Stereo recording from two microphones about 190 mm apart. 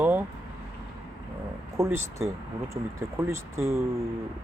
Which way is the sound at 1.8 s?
15° right (ahead or behind).